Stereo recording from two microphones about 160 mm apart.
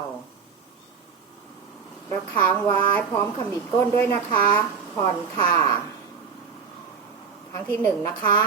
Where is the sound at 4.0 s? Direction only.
10° left (ahead or behind).